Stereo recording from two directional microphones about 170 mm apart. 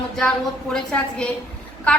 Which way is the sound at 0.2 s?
5° left (ahead or behind).